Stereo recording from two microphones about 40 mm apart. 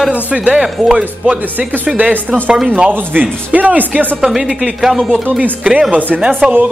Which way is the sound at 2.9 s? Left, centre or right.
Right.